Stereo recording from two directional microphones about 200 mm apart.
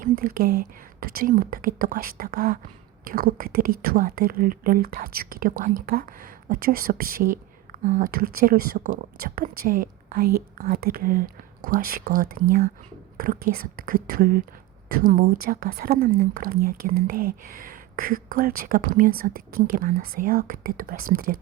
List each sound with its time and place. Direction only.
0.0 s a woman's voice: 45° right (ahead or behind)